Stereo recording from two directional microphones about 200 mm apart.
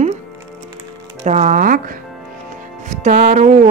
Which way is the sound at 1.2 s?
35° right (ahead or behind).